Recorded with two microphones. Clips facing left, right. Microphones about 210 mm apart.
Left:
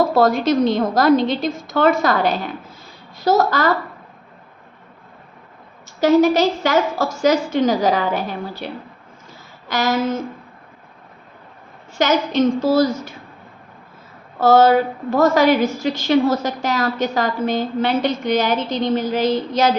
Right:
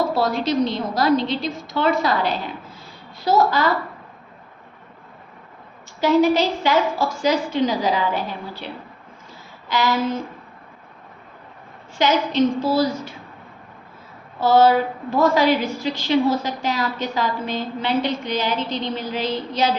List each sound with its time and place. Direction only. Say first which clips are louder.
0.0 s a woman's voice: left 5 dB; 50° left (ahead or behind)
6.0 s a woman's voice: left 3 dB; 45° left (ahead or behind)
11.9 s a woman's voice: left 1 dB; 45° left (ahead or behind)
14.3 s a woman's voice: left 3 dB; 45° left (ahead or behind)